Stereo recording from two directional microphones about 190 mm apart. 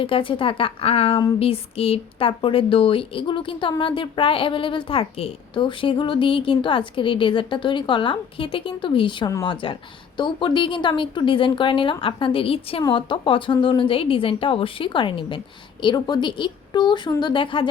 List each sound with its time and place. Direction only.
0.0 s speech: 25° left (ahead or behind)